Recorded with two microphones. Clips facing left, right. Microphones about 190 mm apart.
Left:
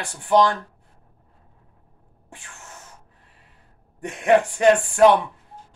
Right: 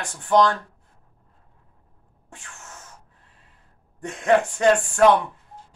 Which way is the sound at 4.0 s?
15° left (ahead or behind).